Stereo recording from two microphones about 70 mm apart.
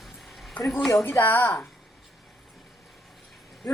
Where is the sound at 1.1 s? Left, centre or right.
Left.